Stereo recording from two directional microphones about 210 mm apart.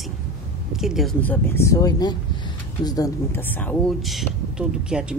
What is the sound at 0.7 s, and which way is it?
Speech, centre (ahead or behind).